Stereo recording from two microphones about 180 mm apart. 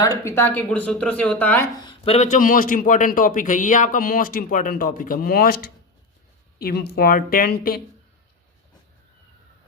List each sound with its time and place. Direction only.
0.0 s speech: 15° left (ahead or behind)
1.8 s speech: 25° left (ahead or behind)
2.1 s a man's voice: 45° left (ahead or behind)